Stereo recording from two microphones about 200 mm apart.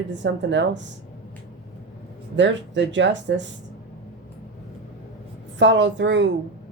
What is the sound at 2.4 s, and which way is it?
Speech, 65° right (ahead or behind).